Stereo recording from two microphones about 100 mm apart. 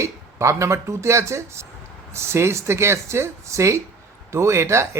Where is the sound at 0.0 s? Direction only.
30° right (ahead or behind).